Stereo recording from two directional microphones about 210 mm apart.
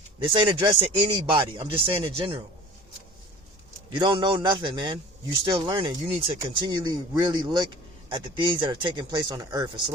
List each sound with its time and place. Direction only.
0.2 s speech: 20° right (ahead or behind)
3.8 s speech: 20° right (ahead or behind)